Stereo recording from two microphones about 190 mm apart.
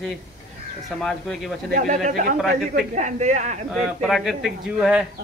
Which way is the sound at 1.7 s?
45° right (ahead or behind).